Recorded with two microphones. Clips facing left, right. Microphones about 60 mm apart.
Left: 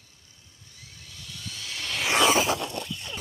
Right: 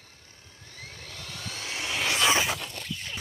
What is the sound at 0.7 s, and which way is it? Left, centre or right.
Vehicle, right.